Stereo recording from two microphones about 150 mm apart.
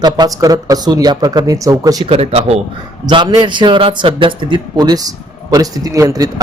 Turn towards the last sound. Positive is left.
turn(degrees=-20)  # may be behind; listen again after turning